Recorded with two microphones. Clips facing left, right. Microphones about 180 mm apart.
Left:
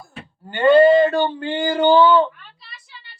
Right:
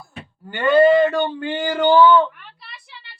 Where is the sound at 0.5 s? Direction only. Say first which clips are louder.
Left 2 dB; 25° left (ahead or behind).